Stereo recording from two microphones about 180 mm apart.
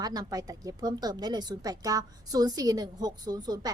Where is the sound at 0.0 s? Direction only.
20° right (ahead or behind).